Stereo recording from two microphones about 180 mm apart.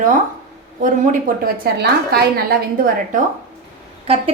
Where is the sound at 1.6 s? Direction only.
60° right (ahead or behind).